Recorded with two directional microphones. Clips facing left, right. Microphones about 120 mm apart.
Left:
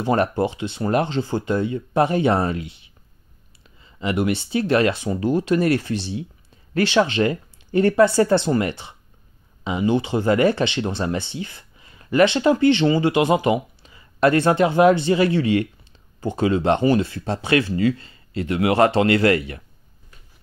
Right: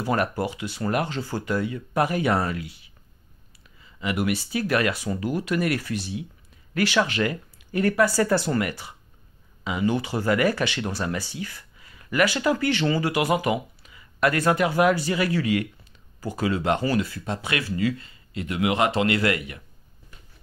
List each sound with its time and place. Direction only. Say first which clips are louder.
0.0 s speech: left 5 dB; 25° left (ahead or behind)